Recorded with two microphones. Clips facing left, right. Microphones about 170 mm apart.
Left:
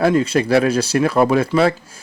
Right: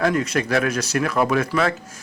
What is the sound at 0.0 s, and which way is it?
A man's voice, 30° left (ahead or behind).